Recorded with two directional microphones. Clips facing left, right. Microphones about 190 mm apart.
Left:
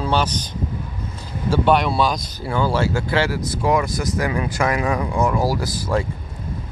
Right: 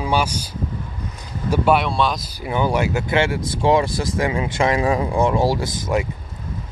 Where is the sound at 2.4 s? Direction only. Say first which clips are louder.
Right 1 dB; 20° right (ahead or behind).